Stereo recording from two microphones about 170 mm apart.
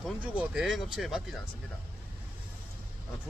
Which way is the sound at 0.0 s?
5° right (ahead or behind).